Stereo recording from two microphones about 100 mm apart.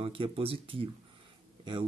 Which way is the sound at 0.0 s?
70° right (ahead or behind).